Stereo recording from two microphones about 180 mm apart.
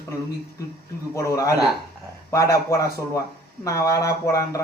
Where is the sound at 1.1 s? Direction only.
15° left (ahead or behind).